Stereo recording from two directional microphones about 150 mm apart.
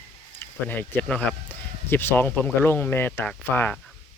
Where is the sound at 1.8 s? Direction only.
15° left (ahead or behind).